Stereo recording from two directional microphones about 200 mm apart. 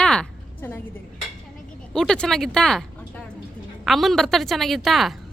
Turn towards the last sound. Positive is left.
turn(degrees=0)  # may be behind; listen again after turning